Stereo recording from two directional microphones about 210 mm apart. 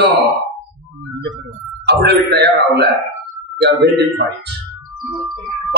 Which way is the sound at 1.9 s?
50° right (ahead or behind).